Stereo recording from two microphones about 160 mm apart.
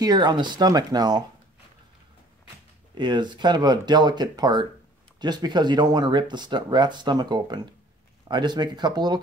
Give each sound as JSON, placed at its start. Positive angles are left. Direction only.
{"t": 0.0, "sound": "speech", "side_deg": -25}
{"t": 2.9, "sound": "speech", "side_deg": -30}